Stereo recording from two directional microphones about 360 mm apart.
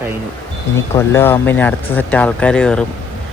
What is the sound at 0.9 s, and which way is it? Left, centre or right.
Speech, centre.